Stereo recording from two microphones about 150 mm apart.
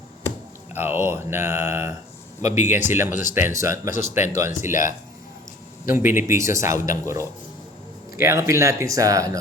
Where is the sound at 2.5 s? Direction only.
50° left (ahead or behind).